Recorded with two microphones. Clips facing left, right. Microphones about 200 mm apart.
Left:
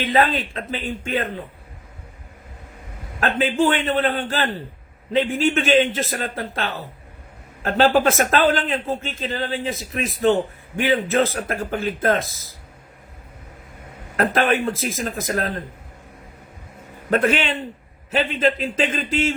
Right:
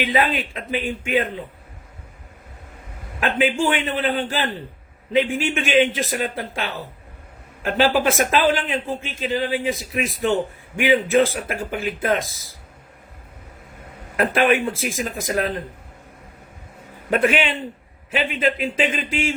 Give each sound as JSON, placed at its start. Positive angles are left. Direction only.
{"t": 0.0, "sound": "a man's voice", "side_deg": -15}
{"t": 3.2, "sound": "a man's voice", "side_deg": -15}
{"t": 7.8, "sound": "a man's voice", "side_deg": -15}
{"t": 14.2, "sound": "a man's voice", "side_deg": -10}
{"t": 17.1, "sound": "a man's voice", "side_deg": -10}